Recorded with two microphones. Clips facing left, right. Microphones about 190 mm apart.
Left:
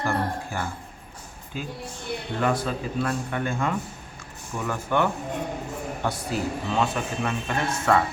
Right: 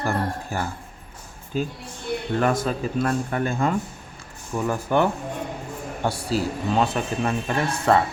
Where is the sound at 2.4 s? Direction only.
45° right (ahead or behind).